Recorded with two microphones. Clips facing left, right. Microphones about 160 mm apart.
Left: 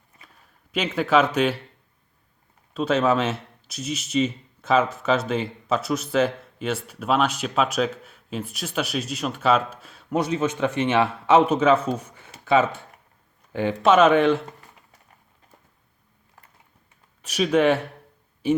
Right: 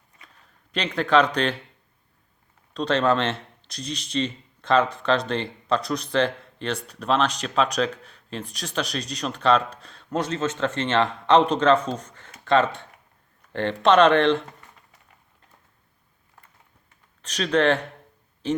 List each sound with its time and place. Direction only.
0.2 s a sound: 5° left (ahead or behind)
2.7 s a man's voice: 5° left (ahead or behind)
17.2 s speech: 10° left (ahead or behind)